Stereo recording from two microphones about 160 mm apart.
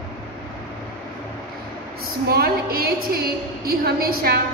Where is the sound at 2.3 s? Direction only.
75° right (ahead or behind).